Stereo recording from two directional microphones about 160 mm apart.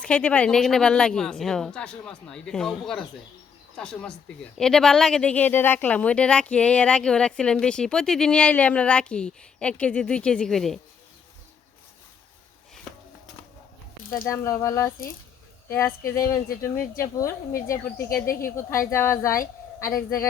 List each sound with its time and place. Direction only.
0.0 s speech: 10° left (ahead or behind)
14.3 s speech: 15° left (ahead or behind)
17.2 s speech: 20° left (ahead or behind)
17.9 s speech: 65° left (ahead or behind)
18.5 s speech: 15° left (ahead or behind)
19.4 s speech: 65° left (ahead or behind)